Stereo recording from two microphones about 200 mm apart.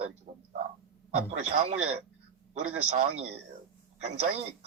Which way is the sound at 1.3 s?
40° right (ahead or behind).